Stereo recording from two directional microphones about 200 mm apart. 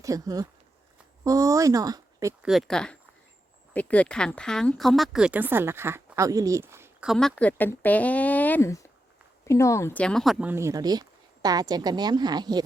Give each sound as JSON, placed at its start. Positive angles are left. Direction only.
{"t": 0.0, "sound": "speech", "side_deg": -15}
{"t": 2.4, "sound": "speech", "side_deg": 0}
{"t": 7.1, "sound": "speech", "side_deg": 0}
{"t": 10.5, "sound": "a woman's voice", "side_deg": -15}